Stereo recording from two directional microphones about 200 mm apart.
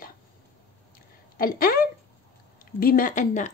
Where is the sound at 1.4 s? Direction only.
45° left (ahead or behind).